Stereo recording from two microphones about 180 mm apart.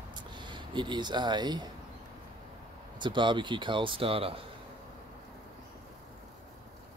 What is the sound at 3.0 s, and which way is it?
Speech, 25° right (ahead or behind).